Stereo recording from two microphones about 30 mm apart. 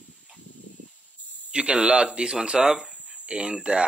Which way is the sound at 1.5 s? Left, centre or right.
Right.